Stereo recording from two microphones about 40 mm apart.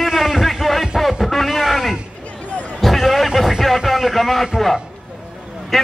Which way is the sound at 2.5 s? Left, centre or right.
Left.